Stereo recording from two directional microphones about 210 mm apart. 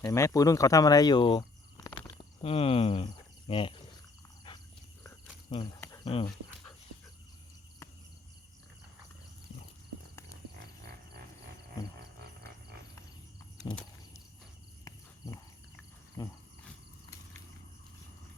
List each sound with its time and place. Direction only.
0.0 s speech: 15° left (ahead or behind)
4.5 s a sound: 20° left (ahead or behind)
5.5 s speech: 20° left (ahead or behind)
16.2 s speech: 15° left (ahead or behind)